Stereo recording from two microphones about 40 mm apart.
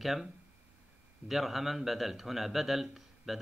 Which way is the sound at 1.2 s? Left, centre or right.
Centre.